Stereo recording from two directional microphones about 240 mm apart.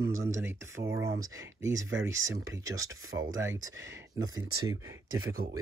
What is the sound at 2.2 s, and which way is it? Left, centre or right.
Speech, centre.